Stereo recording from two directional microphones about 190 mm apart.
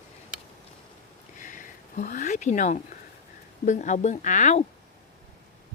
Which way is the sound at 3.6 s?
40° left (ahead or behind).